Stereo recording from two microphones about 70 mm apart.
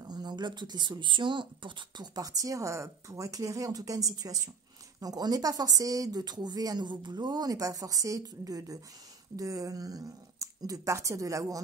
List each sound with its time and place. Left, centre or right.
0.0 s speech: right
2.0 s speech: right